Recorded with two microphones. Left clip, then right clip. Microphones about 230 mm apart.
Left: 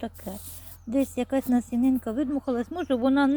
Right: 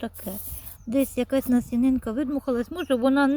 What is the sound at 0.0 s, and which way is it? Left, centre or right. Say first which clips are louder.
Speech: right 1 dB; centre.